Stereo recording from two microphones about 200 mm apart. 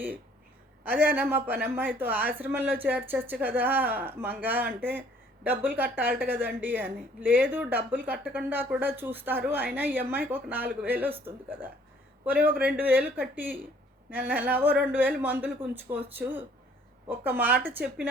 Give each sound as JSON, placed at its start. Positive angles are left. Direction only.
{"t": 0.9, "sound": "speech", "side_deg": -10}